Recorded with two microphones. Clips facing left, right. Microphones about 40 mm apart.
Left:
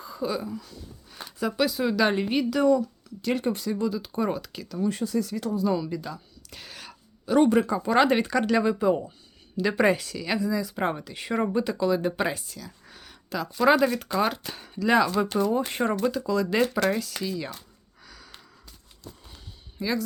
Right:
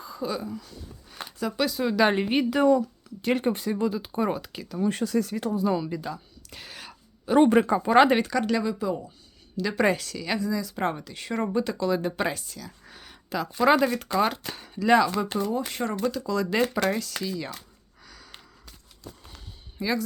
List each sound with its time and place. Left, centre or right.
0.0 s speech: centre
2.3 s speech: right
4.8 s speech: right
5.5 s speech: right
6.0 s a sound: centre
7.3 s speech: right
7.5 s speech: right
7.9 s speech: centre
8.2 s speech: centre
9.6 s speech: centre
15.4 s speech: left
16.1 s speech: centre
18.0 s sniff: centre
19.8 s speech: centre